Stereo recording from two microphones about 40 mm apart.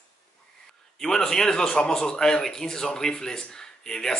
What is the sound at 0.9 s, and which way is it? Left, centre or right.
A man's voice, centre.